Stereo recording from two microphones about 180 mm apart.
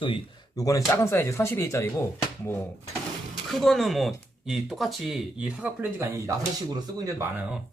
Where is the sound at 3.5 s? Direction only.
Centre (ahead or behind).